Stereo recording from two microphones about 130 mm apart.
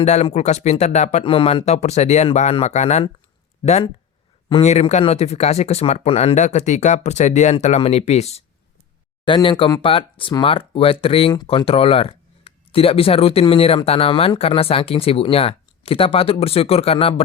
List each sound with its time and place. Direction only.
0.0 s speech: 60° left (ahead or behind); by 1.6 s 45° left (ahead or behind)
1.6 s speech: 60° left (ahead or behind)
9.2 s speech: 40° left (ahead or behind)